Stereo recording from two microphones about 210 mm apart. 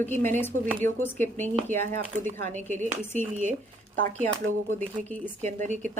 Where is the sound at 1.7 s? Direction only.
35° right (ahead or behind).